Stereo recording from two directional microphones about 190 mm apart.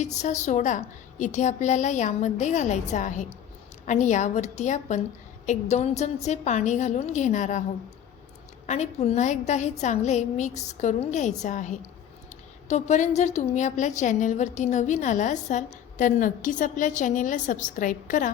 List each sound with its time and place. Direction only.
0.0 s a woman's voice: 40° left (ahead or behind)
8.6 s a woman's voice: 35° left (ahead or behind)